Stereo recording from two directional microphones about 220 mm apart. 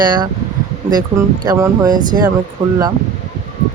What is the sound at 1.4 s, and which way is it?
Speech, 15° right (ahead or behind).